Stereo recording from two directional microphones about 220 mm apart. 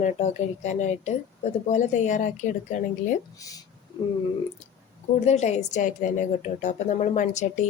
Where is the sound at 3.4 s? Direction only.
15° left (ahead or behind).